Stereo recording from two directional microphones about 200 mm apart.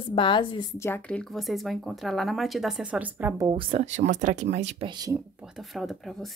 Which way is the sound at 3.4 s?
30° right (ahead or behind).